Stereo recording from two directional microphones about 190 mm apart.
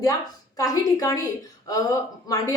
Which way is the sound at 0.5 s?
20° left (ahead or behind).